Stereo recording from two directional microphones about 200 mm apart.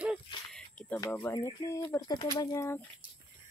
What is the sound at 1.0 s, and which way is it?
Speech, 15° left (ahead or behind).